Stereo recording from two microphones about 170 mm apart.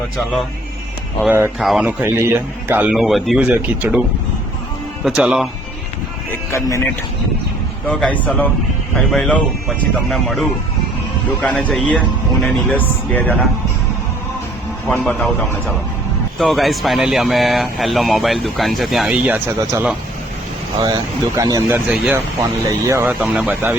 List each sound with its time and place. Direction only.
1.5 s speech: centre (ahead or behind)
1.9 s speech: 10° right (ahead or behind)
5.0 s speech: 5° right (ahead or behind)
6.5 s a man's voice: 15° left (ahead or behind)
7.9 s a man's voice: 10° left (ahead or behind)
14.8 s a man's voice: 10° left (ahead or behind); by 21.6 s 20° right (ahead or behind)
21.7 s speech: 10° right (ahead or behind)